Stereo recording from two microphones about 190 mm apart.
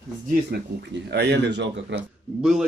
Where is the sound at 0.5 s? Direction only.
60° right (ahead or behind).